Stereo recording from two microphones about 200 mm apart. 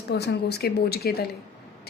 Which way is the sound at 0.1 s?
55° left (ahead or behind).